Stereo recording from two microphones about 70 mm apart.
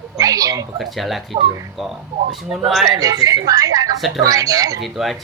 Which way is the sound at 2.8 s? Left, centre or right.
Right.